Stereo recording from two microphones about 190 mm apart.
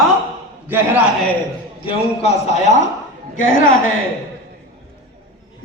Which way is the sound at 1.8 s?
30° left (ahead or behind).